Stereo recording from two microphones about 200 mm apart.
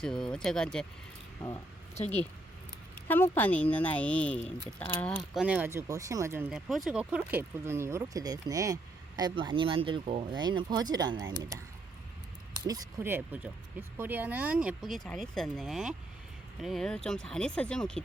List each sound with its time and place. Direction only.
0.0 s speech: 5° left (ahead or behind)
2.0 s speech: 35° left (ahead or behind)
3.1 s speech: 10° left (ahead or behind)
5.3 s speech: 5° right (ahead or behind)
12.6 s speech: 15° right (ahead or behind); by 18.0 s 5° left (ahead or behind)